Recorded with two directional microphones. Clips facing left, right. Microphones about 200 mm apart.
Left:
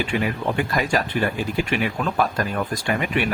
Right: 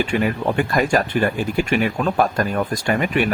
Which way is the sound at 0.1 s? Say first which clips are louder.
Right 3 dB; 50° right (ahead or behind).